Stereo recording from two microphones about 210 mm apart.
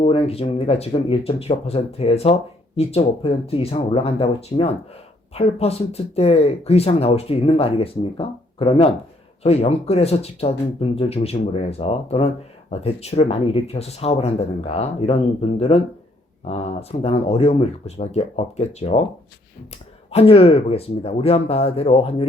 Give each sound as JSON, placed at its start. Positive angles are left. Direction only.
{"t": 0.0, "sound": "speech", "side_deg": 30}
{"t": 20.1, "sound": "speech", "side_deg": 30}